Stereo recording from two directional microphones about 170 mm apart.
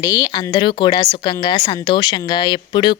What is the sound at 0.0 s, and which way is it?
Speech, 20° left (ahead or behind).